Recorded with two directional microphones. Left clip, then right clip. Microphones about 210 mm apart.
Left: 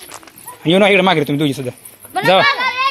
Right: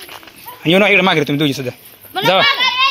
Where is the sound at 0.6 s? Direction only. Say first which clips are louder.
Even; 10° left (ahead or behind).